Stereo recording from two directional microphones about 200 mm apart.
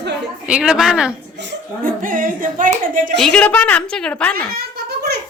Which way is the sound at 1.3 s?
60° right (ahead or behind).